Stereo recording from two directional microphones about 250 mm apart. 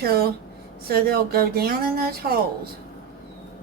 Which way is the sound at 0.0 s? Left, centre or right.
Right.